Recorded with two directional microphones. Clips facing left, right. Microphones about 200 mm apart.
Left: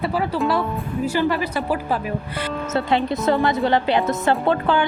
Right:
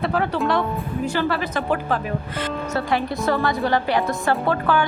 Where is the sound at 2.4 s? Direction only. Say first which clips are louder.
Left 2 dB; 20° left (ahead or behind).